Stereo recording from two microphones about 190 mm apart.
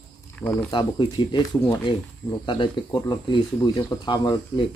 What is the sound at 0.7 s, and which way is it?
Speech, 25° left (ahead or behind).